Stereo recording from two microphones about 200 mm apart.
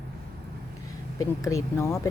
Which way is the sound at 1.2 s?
15° left (ahead or behind).